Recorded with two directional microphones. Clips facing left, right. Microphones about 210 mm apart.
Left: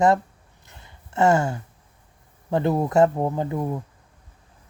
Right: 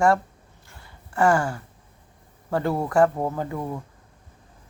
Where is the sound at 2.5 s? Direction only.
20° left (ahead or behind).